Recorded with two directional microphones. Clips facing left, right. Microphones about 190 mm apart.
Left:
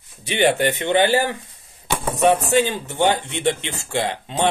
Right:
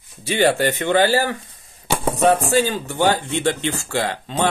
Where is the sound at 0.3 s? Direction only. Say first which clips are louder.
Right 1 dB; 20° left (ahead or behind).